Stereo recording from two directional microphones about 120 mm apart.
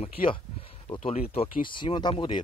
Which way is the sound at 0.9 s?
55° left (ahead or behind).